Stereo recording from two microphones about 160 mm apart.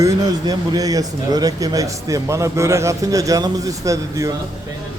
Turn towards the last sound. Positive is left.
turn(degrees=-20)  # may be behind; listen again after turning